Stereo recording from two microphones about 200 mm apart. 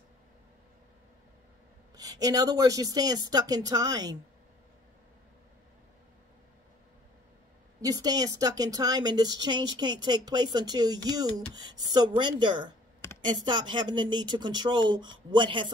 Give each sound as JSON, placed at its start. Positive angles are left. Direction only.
{"t": 2.0, "sound": "speech", "side_deg": -20}
{"t": 7.8, "sound": "speech", "side_deg": -15}